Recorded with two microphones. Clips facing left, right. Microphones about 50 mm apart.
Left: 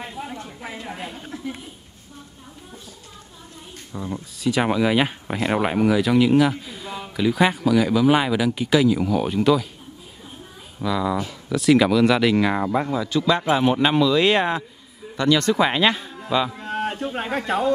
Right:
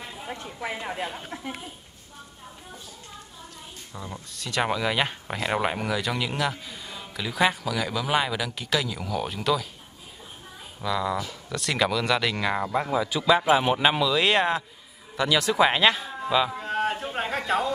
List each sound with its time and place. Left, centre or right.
0.3 s a woman's voice: right
3.9 s speech: centre
10.8 s speech: centre
12.9 s speech: centre
16.2 s a sound: centre
17.5 s speech: centre